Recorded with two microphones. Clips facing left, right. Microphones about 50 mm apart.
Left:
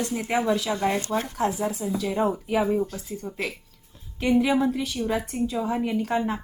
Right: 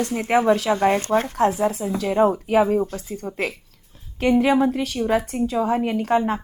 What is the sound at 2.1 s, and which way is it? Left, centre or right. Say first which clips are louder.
Speech: right 8 dB; right.